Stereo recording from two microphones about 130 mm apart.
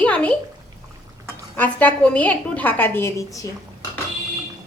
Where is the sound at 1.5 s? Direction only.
15° left (ahead or behind).